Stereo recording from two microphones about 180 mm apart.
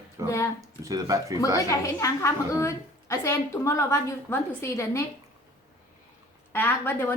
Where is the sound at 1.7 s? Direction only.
15° left (ahead or behind).